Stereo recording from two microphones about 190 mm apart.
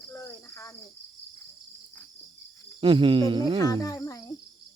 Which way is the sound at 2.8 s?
25° right (ahead or behind).